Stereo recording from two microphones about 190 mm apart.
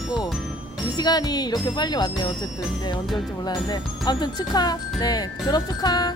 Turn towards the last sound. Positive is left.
turn(degrees=20)  # may be behind; listen again after turning